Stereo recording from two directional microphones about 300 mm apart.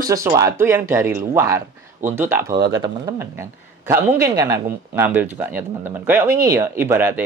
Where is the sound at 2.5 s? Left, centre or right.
Right.